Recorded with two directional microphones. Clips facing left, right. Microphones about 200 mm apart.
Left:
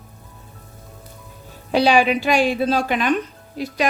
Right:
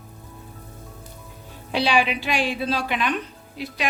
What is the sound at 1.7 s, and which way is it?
A woman's voice, 45° left (ahead or behind).